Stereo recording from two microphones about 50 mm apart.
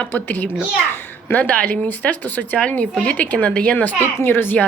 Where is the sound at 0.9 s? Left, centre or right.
Left.